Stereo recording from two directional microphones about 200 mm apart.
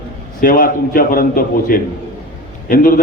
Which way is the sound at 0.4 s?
45° left (ahead or behind).